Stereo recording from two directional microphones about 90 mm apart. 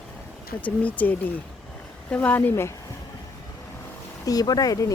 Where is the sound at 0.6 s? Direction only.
15° left (ahead or behind).